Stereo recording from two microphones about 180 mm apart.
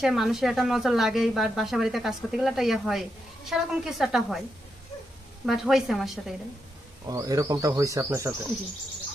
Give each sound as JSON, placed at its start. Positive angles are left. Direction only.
{"t": 0.0, "sound": "speech", "side_deg": 0}
{"t": 5.5, "sound": "speech", "side_deg": 0}
{"t": 7.1, "sound": "speech", "side_deg": -20}